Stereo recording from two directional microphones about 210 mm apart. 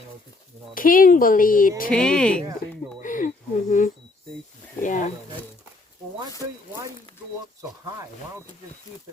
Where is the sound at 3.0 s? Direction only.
40° left (ahead or behind).